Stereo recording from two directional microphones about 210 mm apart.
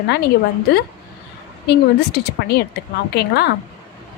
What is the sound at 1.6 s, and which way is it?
Speech, 50° left (ahead or behind).